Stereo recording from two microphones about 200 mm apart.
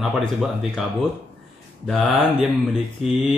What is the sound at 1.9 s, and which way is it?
Speech, centre (ahead or behind).